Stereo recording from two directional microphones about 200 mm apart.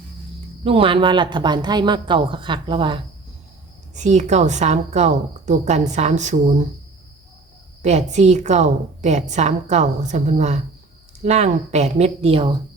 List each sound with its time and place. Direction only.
0.6 s speech: 25° right (ahead or behind)
3.9 s a woman's voice: 35° right (ahead or behind)
7.8 s a woman's voice: 35° right (ahead or behind)